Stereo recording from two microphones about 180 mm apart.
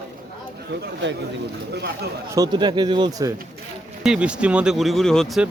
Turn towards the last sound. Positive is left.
turn(degrees=0)  # may be behind; listen again after turning